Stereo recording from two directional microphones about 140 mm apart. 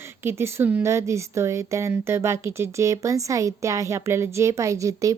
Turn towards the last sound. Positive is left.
turn(degrees=-25)  # may be behind; listen again after turning